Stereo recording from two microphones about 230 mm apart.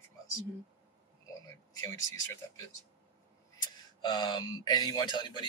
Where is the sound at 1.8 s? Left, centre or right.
Centre.